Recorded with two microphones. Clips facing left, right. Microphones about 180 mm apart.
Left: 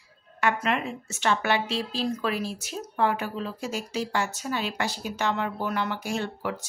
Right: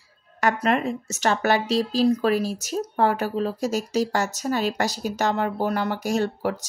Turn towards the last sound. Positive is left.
turn(degrees=-40)  # may be behind; listen again after turning